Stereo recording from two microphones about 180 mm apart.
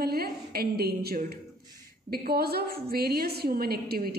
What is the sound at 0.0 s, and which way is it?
A woman's voice, 60° right (ahead or behind).